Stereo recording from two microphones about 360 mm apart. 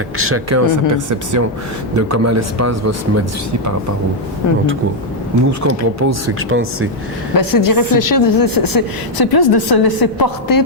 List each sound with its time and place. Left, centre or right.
0.2 s speech: right
0.6 s speech: right
5.5 s speech: right
7.3 s a woman's voice: left